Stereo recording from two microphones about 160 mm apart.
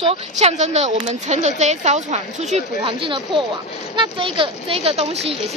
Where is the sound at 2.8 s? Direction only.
30° right (ahead or behind).